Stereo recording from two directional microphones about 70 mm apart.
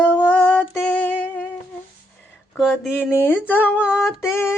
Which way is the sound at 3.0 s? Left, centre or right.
Left.